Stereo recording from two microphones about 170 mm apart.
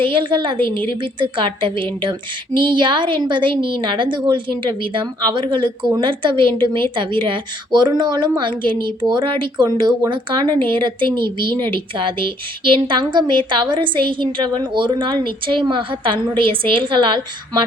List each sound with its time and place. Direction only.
0.0 s a woman's voice: 30° right (ahead or behind)